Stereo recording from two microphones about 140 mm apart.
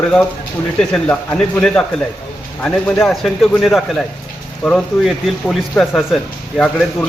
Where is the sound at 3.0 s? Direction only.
Centre (ahead or behind).